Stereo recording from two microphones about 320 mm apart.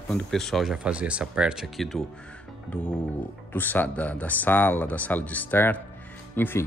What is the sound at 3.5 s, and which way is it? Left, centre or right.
Speech, centre.